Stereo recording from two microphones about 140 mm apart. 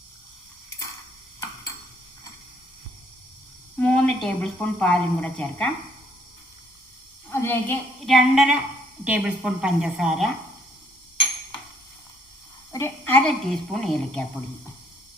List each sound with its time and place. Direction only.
3.8 s a woman's voice: 10° left (ahead or behind)
7.3 s a sound: 15° left (ahead or behind)
8.0 s a woman's voice: 5° right (ahead or behind)
12.7 s a woman's voice: 15° left (ahead or behind)